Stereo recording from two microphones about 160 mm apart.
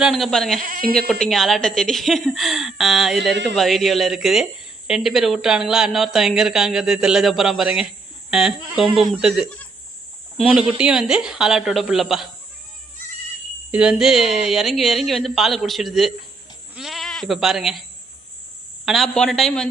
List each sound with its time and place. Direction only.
0.0 s a woman's voice: centre (ahead or behind)
0.6 s speech: 60° right (ahead or behind)
1.2 s a woman's voice: centre (ahead or behind)
3.2 s speech: 90° right
3.5 s a woman's voice: centre (ahead or behind)
10.5 s a woman's voice: 5° right (ahead or behind)
13.7 s a woman's voice: 5° right (ahead or behind)
18.9 s a woman's voice: centre (ahead or behind)